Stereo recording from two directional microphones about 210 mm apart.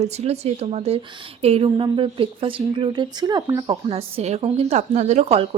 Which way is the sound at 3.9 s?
30° right (ahead or behind).